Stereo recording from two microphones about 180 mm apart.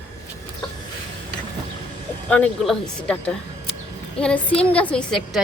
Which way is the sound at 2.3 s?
5° left (ahead or behind).